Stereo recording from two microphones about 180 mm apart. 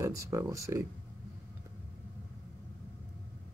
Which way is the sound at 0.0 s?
15° right (ahead or behind).